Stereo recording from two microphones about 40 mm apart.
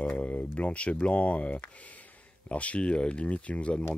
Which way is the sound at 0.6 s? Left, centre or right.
Left.